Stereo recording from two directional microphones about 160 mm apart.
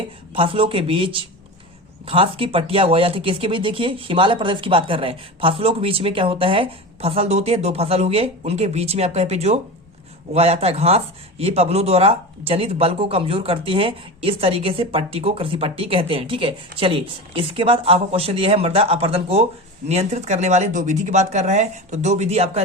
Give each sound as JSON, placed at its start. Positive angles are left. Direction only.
{"t": 0.3, "sound": "speech", "side_deg": -35}